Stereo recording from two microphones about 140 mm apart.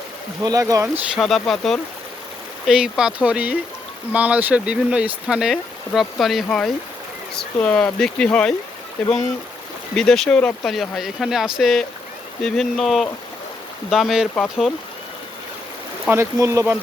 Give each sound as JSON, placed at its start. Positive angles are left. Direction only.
{"t": 0.4, "sound": "speech", "side_deg": -25}
{"t": 1.1, "sound": "speech", "side_deg": 0}
{"t": 16.0, "sound": "speech", "side_deg": -20}